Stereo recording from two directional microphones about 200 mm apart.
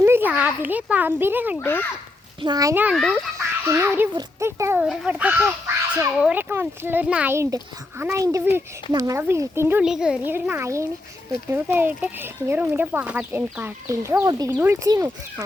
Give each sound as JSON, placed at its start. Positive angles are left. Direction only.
{"t": 0.0, "sound": "a child's voice", "side_deg": -10}
{"t": 1.5, "sound": "a child's voice", "side_deg": 10}
{"t": 2.4, "sound": "speech", "side_deg": -20}
{"t": 2.9, "sound": "a child's voice", "side_deg": 0}
{"t": 3.3, "sound": "a child's voice", "side_deg": -15}